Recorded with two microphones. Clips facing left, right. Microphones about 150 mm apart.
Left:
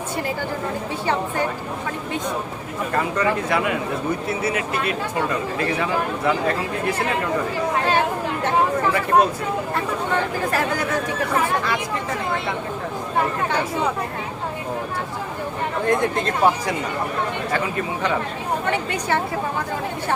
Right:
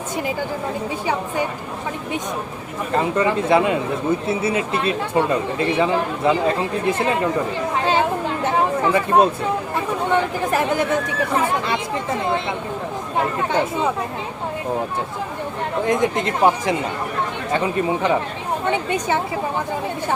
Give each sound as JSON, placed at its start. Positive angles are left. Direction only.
{"t": 2.9, "sound": "speech", "side_deg": -20}
{"t": 8.9, "sound": "speech", "side_deg": -20}
{"t": 13.5, "sound": "speech", "side_deg": -20}
{"t": 15.9, "sound": "speech", "side_deg": -20}